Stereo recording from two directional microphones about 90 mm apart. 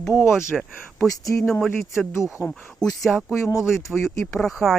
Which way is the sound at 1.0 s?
40° left (ahead or behind).